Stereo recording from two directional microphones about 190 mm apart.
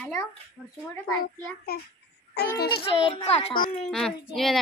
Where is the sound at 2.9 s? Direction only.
30° left (ahead or behind).